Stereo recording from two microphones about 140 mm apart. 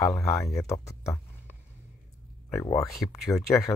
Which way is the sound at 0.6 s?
20° left (ahead or behind).